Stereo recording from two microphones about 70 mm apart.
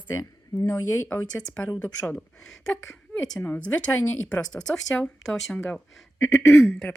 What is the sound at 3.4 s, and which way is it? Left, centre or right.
Speech, left.